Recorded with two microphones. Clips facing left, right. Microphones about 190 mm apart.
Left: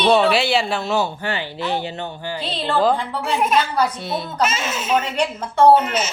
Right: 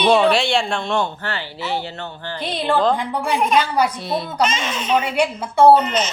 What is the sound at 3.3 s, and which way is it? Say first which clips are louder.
A woman's voice: right 1 dB; centre (ahead or behind).